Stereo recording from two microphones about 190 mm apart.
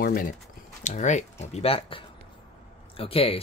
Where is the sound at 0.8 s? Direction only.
40° left (ahead or behind).